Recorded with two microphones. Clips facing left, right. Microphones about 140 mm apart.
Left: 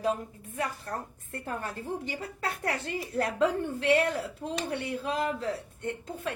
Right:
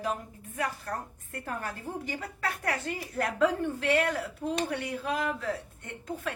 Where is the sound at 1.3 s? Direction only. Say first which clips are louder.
Left 1 dB; 30° left (ahead or behind).